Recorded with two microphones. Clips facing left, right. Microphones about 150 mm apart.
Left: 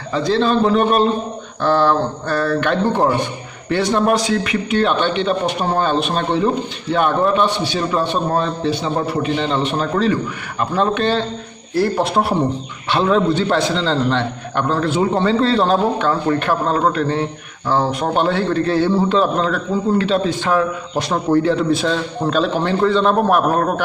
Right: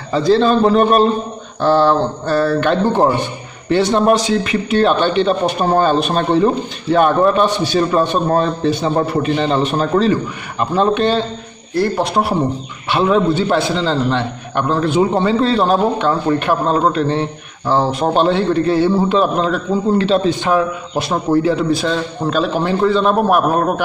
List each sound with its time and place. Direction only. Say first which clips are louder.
0.1 s speech: right 4 dB; 35° right (ahead or behind)
1.6 s a man's voice: right 3 dB; 30° right (ahead or behind)
10.6 s a man's voice: right 3 dB; 20° right (ahead or behind)
11.7 s a man's voice: right 1 dB; centre (ahead or behind)
20.0 s a man's voice: right 3 dB; 25° right (ahead or behind)